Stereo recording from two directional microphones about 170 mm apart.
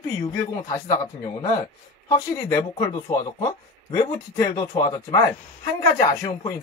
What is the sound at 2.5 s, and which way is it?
Speech, 20° left (ahead or behind).